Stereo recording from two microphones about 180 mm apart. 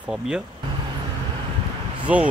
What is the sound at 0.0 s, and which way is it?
Speech, 5° right (ahead or behind).